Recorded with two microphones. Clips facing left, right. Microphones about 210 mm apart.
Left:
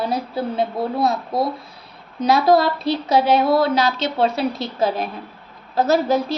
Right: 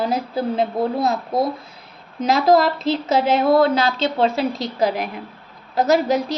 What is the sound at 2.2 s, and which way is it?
A woman's voice, 25° right (ahead or behind).